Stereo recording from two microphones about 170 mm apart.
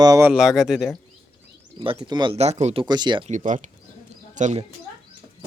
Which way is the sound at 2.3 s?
40° right (ahead or behind).